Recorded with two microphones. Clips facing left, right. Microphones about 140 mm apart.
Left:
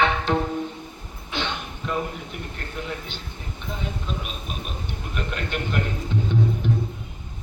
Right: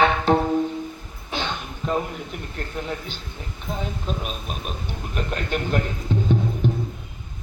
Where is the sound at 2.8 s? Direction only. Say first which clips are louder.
Right 2 dB; 40° right (ahead or behind).